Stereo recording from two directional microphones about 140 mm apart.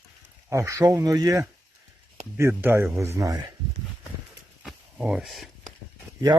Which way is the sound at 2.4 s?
15° right (ahead or behind).